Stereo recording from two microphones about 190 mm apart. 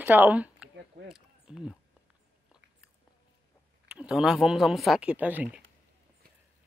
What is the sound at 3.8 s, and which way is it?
Speech, 5° right (ahead or behind).